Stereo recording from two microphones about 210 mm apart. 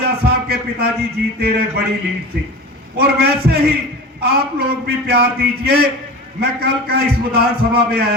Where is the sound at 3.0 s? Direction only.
50° right (ahead or behind).